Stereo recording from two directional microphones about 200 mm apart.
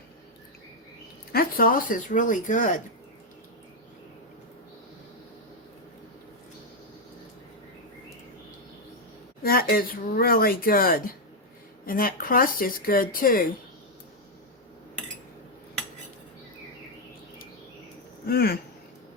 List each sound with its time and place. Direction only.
1.3 s speech: 45° left (ahead or behind)
9.4 s speech: 50° left (ahead or behind)
18.3 s speech: 50° left (ahead or behind)